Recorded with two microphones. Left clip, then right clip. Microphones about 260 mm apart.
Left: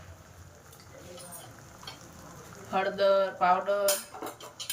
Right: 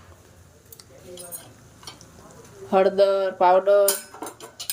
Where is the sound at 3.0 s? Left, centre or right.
Centre.